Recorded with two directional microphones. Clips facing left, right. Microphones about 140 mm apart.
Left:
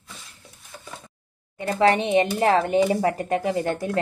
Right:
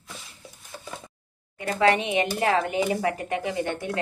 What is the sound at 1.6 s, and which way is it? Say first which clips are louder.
A woman's voice: left 2 dB; 30° left (ahead or behind).